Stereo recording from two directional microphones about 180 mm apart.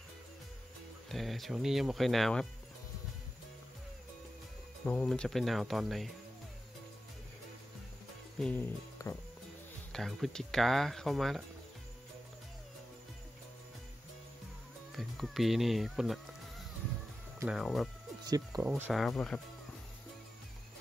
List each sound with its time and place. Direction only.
1.0 s speech: centre (ahead or behind)
4.8 s speech: 5° left (ahead or behind)
8.4 s music: 10° left (ahead or behind)
9.9 s speech: centre (ahead or behind)
15.0 s speech: centre (ahead or behind)
18.2 s speech: 20° right (ahead or behind)
18.6 s speech: 5° right (ahead or behind)